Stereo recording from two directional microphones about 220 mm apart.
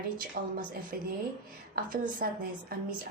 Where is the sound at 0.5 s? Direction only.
40° right (ahead or behind).